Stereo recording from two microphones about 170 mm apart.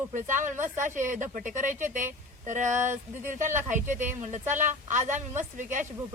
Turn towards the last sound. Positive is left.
turn(degrees=-45)  # may be behind; listen again after turning